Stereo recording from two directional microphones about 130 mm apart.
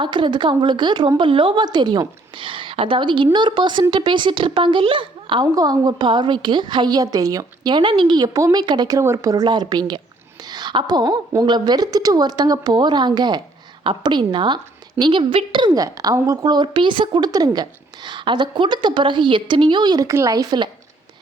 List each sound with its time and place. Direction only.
0.0 s a woman's voice: 35° right (ahead or behind)